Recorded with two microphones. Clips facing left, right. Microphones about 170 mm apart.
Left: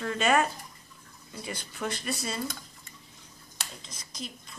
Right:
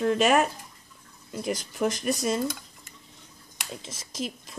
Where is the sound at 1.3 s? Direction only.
60° right (ahead or behind).